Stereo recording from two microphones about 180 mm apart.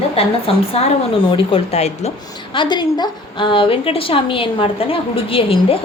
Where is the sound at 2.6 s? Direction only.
25° left (ahead or behind).